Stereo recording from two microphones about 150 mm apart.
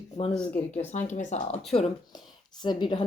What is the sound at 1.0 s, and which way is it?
Speech, 50° left (ahead or behind).